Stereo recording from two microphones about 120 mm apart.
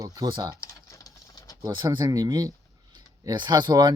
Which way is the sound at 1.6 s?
35° right (ahead or behind).